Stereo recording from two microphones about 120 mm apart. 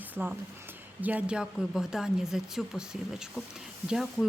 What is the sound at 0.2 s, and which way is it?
A woman's voice, 10° right (ahead or behind).